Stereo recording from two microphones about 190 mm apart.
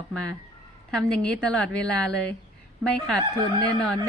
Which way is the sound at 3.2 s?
20° right (ahead or behind).